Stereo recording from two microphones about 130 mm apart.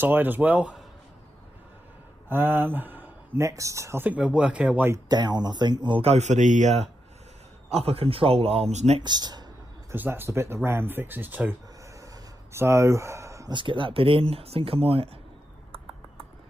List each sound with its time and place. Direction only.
0.0 s speech: 15° right (ahead or behind)
2.2 s speech: 15° right (ahead or behind)
4.9 s speech: 30° right (ahead or behind); by 6.9 s 60° right (ahead or behind)
7.7 s speech: 50° right (ahead or behind)
9.0 s a sound: 35° right (ahead or behind)
9.9 s speech: 15° right (ahead or behind)
12.5 s speech: 20° right (ahead or behind)
13.5 s speech: 40° right (ahead or behind)